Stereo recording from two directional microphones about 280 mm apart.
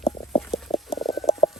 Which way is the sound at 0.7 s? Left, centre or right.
Centre.